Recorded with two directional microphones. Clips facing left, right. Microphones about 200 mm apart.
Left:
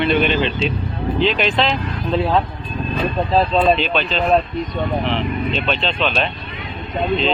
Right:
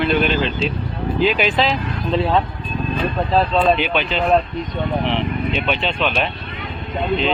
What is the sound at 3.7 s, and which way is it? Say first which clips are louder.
Speech: even; 10° right (ahead or behind).